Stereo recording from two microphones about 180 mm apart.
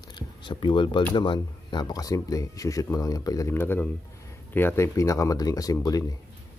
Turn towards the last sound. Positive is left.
turn(degrees=20)  # may be behind; listen again after turning